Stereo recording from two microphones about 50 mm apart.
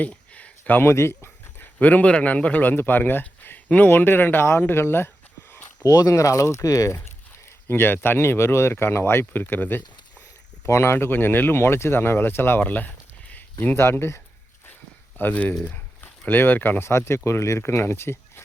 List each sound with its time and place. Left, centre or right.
0.1 s a sound: left
0.8 s dog: left
1.8 s speech: left
6.1 s speech: left
7.7 s speech: left
10.7 s speech: left
11.6 s speech: left
13.3 s a sound: left
13.7 s speech: left
15.2 s speech: left
16.8 s speech: left
17.2 s speech: left
17.6 s speech: left